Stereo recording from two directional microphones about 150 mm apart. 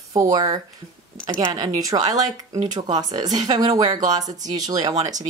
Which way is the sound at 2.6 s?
50° right (ahead or behind).